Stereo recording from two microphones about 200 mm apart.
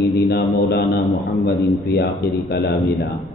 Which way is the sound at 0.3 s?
55° left (ahead or behind).